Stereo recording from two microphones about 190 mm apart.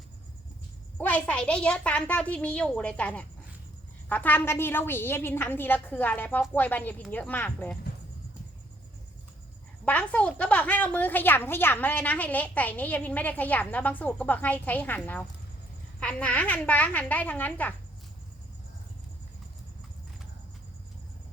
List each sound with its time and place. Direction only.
0.9 s a woman's voice: 10° left (ahead or behind)
9.8 s a woman's voice: 10° left (ahead or behind)